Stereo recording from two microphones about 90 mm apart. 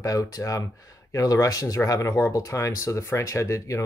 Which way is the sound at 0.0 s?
40° left (ahead or behind).